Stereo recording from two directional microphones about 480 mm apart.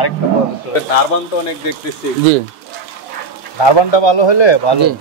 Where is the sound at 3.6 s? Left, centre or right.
Left.